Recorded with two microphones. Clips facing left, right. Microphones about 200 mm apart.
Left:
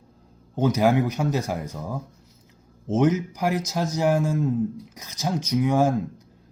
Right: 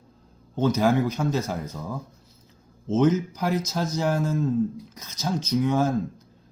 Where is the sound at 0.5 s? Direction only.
15° left (ahead or behind).